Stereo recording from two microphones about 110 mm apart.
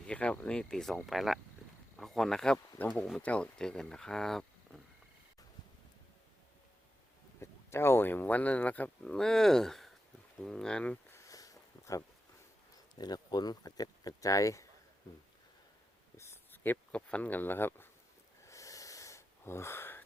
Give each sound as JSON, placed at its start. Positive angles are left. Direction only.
{"t": 0.1, "sound": "speech", "side_deg": 10}
{"t": 7.3, "sound": "speech", "side_deg": 25}
{"t": 11.1, "sound": "a sound", "side_deg": 30}
{"t": 13.0, "sound": "speech", "side_deg": 40}
{"t": 16.1, "sound": "speech", "side_deg": 25}
{"t": 18.4, "sound": "wheeze", "side_deg": 30}